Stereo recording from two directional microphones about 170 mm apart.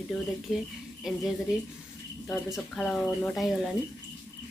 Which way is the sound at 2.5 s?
Centre (ahead or behind).